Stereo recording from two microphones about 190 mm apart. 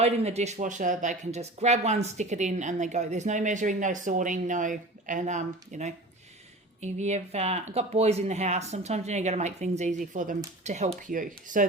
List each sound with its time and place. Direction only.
0.0 s speech: 35° right (ahead or behind)